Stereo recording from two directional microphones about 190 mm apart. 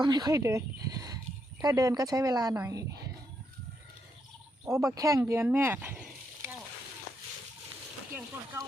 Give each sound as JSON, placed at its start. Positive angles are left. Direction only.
{"t": 0.0, "sound": "a woman's voice", "side_deg": -20}
{"t": 4.7, "sound": "speech", "side_deg": -15}